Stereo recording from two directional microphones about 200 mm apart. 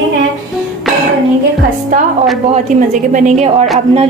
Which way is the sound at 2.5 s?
40° right (ahead or behind).